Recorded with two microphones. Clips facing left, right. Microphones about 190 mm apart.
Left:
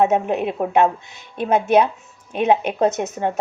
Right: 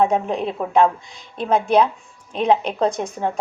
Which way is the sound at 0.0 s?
5° left (ahead or behind).